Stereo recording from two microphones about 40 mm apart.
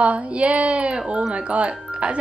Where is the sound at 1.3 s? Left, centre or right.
Right.